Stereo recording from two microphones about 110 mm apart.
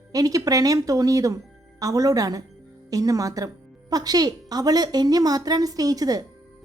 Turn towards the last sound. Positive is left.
turn(degrees=-35)  # may be behind; listen again after turning